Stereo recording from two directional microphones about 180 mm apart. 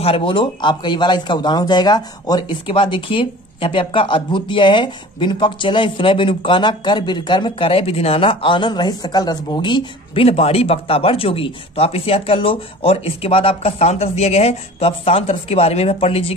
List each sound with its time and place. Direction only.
0.0 s speech: 30° left (ahead or behind)